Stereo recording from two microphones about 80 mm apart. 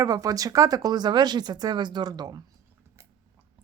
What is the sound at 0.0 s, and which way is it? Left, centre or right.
Speech, right.